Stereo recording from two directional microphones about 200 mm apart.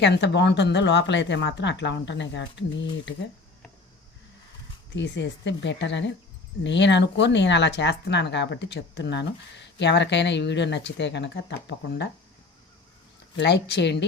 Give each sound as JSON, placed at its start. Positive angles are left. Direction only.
{"t": 0.0, "sound": "speech", "side_deg": 60}
{"t": 4.9, "sound": "speech", "side_deg": 60}
{"t": 13.3, "sound": "speech", "side_deg": 60}